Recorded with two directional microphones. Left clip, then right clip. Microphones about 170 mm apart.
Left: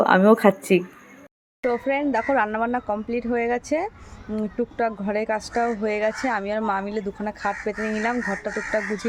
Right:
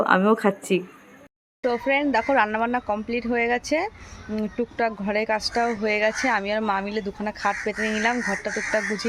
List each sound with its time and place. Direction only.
0.0 s speech: 15° left (ahead or behind)
1.6 s speech: 5° left (ahead or behind)